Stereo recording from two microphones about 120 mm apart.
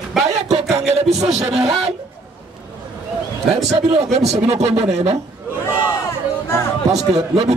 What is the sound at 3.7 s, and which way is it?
Speech, 60° right (ahead or behind).